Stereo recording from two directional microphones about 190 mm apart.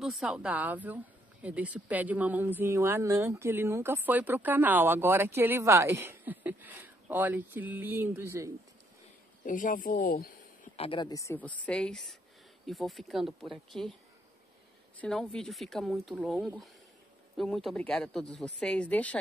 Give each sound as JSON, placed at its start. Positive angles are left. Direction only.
{"t": 0.0, "sound": "speech", "side_deg": 0}
{"t": 9.4, "sound": "speech", "side_deg": 45}
{"t": 10.8, "sound": "speech", "side_deg": 25}
{"t": 15.0, "sound": "speech", "side_deg": 5}